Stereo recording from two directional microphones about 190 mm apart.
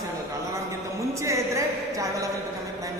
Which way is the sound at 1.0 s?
15° right (ahead or behind).